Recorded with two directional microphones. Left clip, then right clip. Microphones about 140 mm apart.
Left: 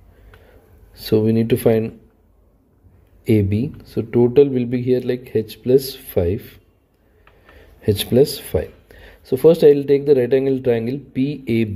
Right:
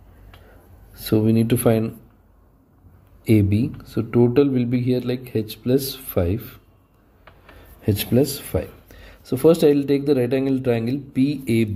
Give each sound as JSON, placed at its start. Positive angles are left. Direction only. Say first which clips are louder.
{"t": 0.9, "sound": "speech", "louder": "left 3 dB", "side_deg": 30}
{"t": 3.3, "sound": "speech", "louder": "left 1 dB", "side_deg": 30}
{"t": 7.8, "sound": "speech", "louder": "left 5 dB", "side_deg": 30}